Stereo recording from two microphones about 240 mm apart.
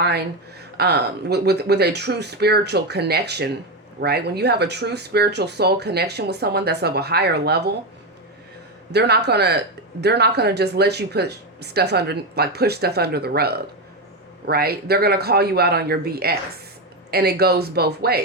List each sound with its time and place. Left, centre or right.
0.8 s speech: right
8.9 s speech: right